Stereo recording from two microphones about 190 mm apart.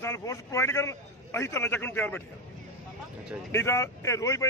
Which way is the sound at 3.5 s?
15° left (ahead or behind).